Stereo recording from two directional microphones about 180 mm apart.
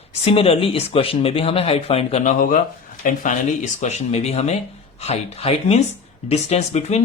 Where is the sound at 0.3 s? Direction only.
35° left (ahead or behind).